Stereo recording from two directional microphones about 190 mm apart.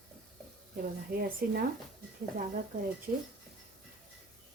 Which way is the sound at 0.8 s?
50° right (ahead or behind).